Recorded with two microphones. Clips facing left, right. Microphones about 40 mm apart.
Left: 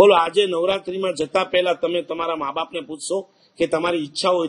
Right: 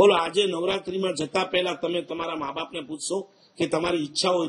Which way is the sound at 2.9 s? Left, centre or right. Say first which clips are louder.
Left 2 dB; left.